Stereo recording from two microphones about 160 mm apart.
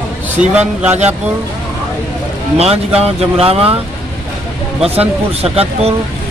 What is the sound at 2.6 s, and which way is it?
Speech, 40° right (ahead or behind).